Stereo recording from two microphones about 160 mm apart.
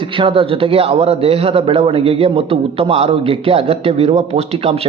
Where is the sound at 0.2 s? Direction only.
35° right (ahead or behind).